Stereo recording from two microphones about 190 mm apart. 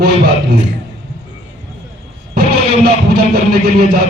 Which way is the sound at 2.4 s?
55° right (ahead or behind).